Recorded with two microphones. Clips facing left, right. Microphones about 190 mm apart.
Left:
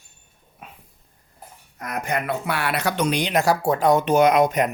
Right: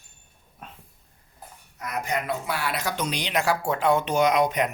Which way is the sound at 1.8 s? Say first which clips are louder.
Left 2 dB; 55° left (ahead or behind).